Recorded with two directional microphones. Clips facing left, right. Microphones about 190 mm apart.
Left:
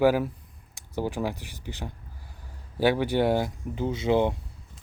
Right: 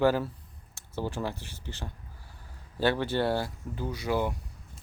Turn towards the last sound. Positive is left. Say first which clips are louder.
# left 6 dB
turn(degrees=25)  # may be behind; listen again after turning